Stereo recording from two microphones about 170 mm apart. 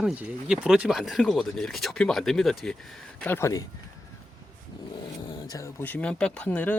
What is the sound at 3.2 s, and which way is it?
Speech, 15° left (ahead or behind).